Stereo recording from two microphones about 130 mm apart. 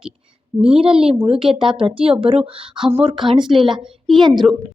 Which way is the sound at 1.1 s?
40° right (ahead or behind).